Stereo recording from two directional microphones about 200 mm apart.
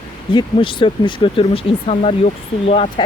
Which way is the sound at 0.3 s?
25° left (ahead or behind).